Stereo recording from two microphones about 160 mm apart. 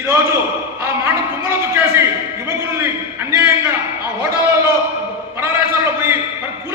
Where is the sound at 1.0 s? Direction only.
15° right (ahead or behind).